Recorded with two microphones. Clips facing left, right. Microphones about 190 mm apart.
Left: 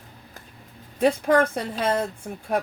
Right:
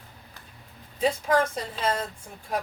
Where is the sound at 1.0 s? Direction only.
60° left (ahead or behind).